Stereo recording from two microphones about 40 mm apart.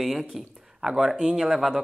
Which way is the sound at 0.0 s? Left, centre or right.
Centre.